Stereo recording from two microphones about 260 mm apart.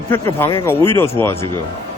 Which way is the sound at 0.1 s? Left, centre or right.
Centre.